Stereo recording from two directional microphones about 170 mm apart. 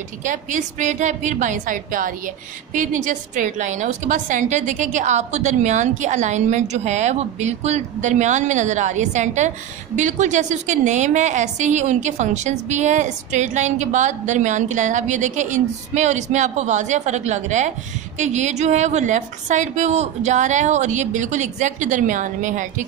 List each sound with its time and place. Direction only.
0.2 s a woman's voice: 50° right (ahead or behind)